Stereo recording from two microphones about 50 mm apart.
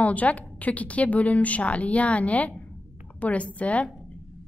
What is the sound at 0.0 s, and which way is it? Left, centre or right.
A woman's voice, left.